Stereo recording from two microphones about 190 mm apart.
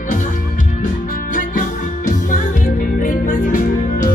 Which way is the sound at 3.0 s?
45° left (ahead or behind).